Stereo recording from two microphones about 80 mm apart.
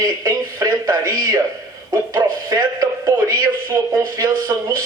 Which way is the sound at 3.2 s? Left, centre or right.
Right.